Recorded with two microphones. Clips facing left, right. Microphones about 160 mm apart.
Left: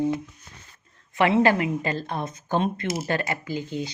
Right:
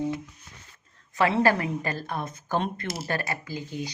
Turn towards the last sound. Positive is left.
turn(degrees=25)  # may be behind; listen again after turning